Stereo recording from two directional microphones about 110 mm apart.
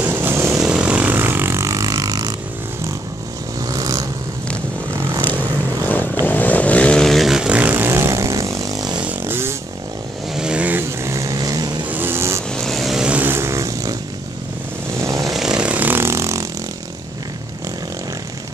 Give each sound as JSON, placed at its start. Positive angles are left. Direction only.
{"t": 0.0, "sound": "vehicle", "side_deg": -20}
{"t": 0.6, "sound": "vehicle", "side_deg": -10}
{"t": 3.6, "sound": "vehicle", "side_deg": -30}
{"t": 5.9, "sound": "vehicle", "side_deg": 15}
{"t": 9.3, "sound": "a sound", "side_deg": -20}
{"t": 10.3, "sound": "vehicle", "side_deg": -10}
{"t": 11.9, "sound": "vehicle", "side_deg": -20}
{"t": 12.4, "sound": "vehicle", "side_deg": 5}
{"t": 15.0, "sound": "vehicle", "side_deg": -30}
{"t": 15.3, "sound": "vehicle", "side_deg": -5}